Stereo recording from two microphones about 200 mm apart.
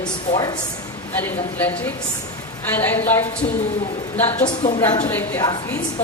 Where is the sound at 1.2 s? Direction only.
10° left (ahead or behind).